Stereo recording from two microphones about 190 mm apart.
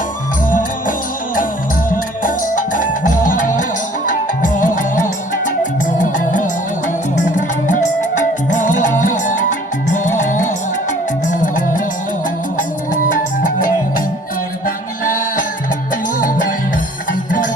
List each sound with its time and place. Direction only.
1.9 s music: 45° left (ahead or behind)
15.0 s music: 45° left (ahead or behind)
17.1 s music: 45° left (ahead or behind)